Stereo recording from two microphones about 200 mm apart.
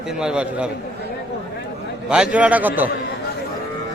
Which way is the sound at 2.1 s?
5° right (ahead or behind).